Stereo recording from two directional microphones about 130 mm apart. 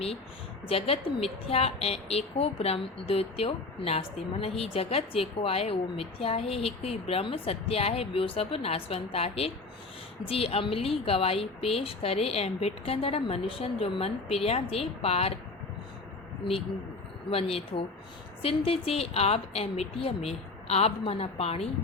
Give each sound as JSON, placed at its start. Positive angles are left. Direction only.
{"t": 0.7, "sound": "a woman's voice", "side_deg": 45}
{"t": 16.4, "sound": "a woman's voice", "side_deg": 50}